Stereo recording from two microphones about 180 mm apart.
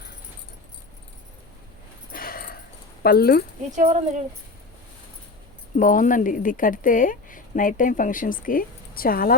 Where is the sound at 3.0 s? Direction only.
60° left (ahead or behind).